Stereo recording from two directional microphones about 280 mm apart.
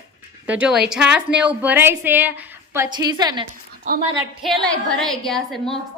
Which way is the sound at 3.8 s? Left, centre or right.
Right.